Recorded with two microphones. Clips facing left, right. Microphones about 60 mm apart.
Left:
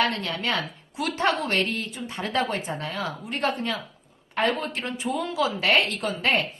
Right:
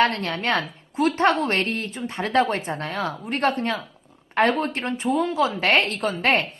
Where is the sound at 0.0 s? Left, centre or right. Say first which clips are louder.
Right 4 dB; right.